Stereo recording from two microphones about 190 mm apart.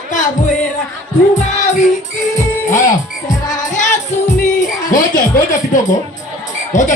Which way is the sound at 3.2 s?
20° left (ahead or behind).